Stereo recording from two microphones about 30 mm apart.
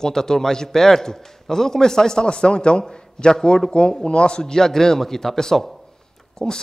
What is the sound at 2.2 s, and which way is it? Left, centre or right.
Speech, left.